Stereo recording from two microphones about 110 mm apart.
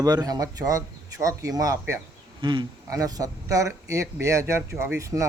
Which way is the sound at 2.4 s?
45° right (ahead or behind).